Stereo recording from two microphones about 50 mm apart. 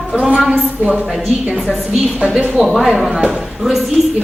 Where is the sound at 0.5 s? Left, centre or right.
Right.